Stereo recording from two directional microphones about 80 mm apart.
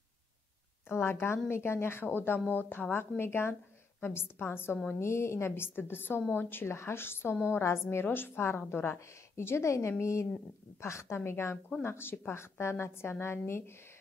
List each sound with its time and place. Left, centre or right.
0.8 s a woman's voice: left